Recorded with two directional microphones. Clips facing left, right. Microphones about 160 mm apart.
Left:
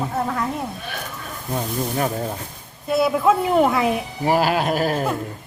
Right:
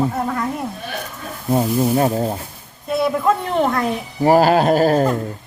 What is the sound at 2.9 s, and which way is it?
Speech, centre (ahead or behind).